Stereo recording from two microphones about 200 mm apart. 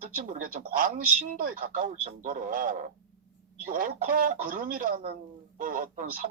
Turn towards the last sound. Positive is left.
turn(degrees=-40)  # may be behind; listen again after turning